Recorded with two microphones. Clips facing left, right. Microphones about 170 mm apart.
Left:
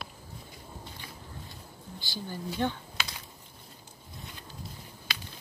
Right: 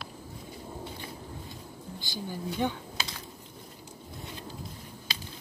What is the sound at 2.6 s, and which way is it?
Speech, 10° right (ahead or behind).